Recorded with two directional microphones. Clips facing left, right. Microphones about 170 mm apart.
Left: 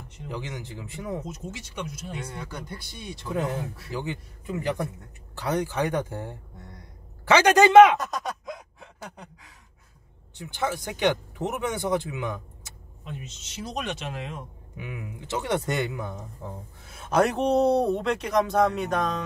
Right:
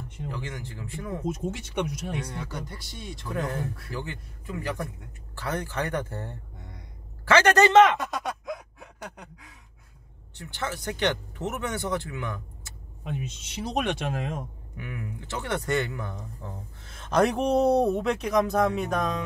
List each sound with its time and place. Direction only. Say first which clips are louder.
0.3 s speech: left 4 dB; 15° left (ahead or behind)
1.2 s speech: right 7 dB; 55° right (ahead or behind)
3.4 s speech: left 1 dB; centre (ahead or behind)
3.9 s a man's voice: left 3 dB; 15° left (ahead or behind)
8.0 s a sound: even; centre (ahead or behind)
10.3 s speech: left 4 dB; 15° left (ahead or behind)
13.0 s speech: right 5 dB; 65° right (ahead or behind); by 14.4 s 50° right (ahead or behind)
14.8 s speech: even; 15° left (ahead or behind)
17.4 s speech: even; 5° right (ahead or behind)